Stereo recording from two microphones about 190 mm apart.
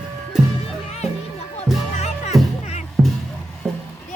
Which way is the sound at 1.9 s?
35° left (ahead or behind).